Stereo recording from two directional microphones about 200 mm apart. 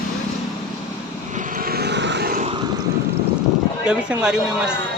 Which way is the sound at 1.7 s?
55° right (ahead or behind).